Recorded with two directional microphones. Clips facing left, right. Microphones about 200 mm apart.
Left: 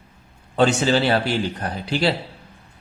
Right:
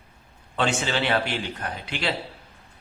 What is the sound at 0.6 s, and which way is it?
Speech, 40° left (ahead or behind).